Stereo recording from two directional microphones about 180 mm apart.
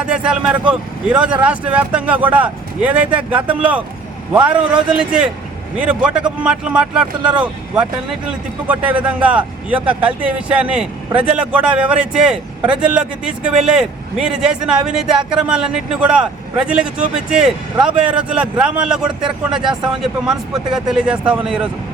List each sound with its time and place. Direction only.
0.0 s a man's voice: 5° right (ahead or behind)
19.6 s speech: 25° right (ahead or behind)
20.2 s a man's voice: centre (ahead or behind)